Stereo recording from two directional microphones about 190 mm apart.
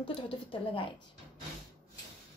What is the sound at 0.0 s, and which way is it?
Speech, 25° left (ahead or behind).